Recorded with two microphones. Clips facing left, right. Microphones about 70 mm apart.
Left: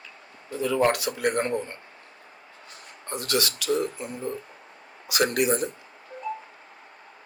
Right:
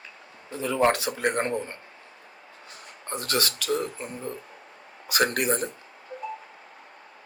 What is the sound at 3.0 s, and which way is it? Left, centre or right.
Speech, right.